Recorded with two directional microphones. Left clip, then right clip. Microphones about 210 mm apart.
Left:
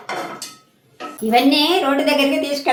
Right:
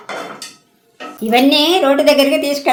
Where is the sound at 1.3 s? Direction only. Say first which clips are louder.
Right 3 dB; 50° right (ahead or behind).